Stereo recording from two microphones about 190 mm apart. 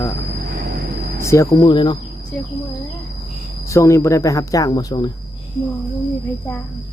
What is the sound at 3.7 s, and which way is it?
Speech, 15° left (ahead or behind).